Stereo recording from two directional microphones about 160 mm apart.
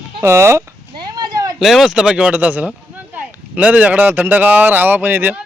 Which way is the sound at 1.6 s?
Centre (ahead or behind).